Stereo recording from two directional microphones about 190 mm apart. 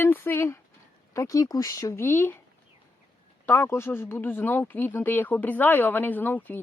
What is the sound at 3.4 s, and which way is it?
Speech, 10° left (ahead or behind).